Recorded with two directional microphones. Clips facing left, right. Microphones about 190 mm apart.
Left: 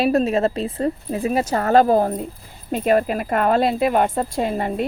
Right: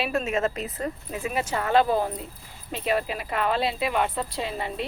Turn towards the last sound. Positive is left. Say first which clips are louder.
# left 8 dB
turn(degrees=50)  # may be behind; listen again after turning